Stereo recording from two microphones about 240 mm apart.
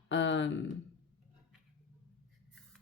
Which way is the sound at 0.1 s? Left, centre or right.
Left.